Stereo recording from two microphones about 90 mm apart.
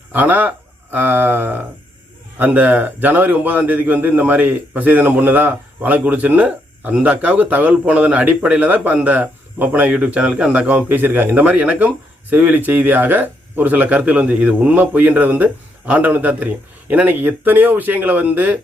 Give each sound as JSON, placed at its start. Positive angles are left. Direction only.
{"t": 0.1, "sound": "a man's voice", "side_deg": -20}